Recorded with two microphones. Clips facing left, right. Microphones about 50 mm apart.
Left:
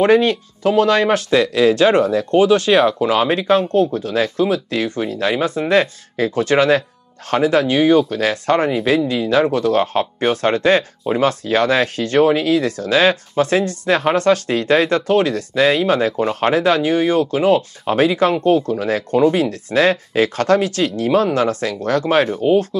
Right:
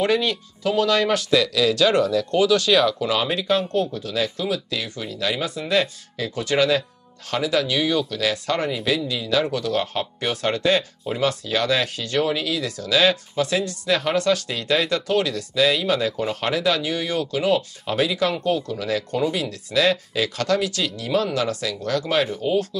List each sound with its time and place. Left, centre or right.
0.0 s speech: left